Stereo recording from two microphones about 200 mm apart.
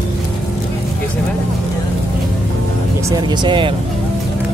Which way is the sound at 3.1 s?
20° right (ahead or behind).